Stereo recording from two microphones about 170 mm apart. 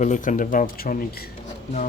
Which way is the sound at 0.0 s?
45° left (ahead or behind).